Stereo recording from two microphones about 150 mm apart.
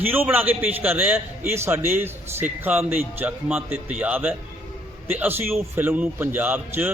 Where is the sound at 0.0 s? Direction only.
15° right (ahead or behind).